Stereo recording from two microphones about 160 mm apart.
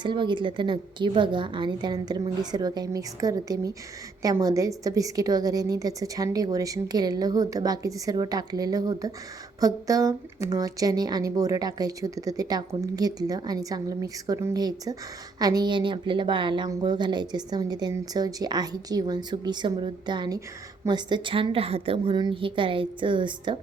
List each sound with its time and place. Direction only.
0.0 s a woman's voice: 30° right (ahead or behind)